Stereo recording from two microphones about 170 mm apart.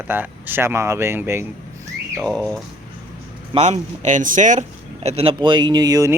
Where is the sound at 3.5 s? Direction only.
40° right (ahead or behind).